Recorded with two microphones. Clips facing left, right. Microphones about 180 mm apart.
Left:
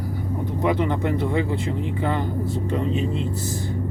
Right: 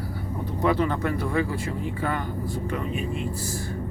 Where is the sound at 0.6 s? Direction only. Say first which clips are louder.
Left 1 dB; 20° left (ahead or behind).